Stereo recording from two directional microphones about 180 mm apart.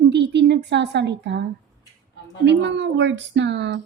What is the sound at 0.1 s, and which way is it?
A woman's voice, 70° right (ahead or behind).